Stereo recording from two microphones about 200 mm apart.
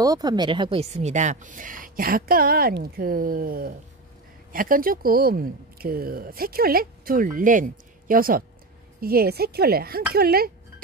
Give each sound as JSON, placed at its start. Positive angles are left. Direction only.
{"t": 0.0, "sound": "speech", "side_deg": -20}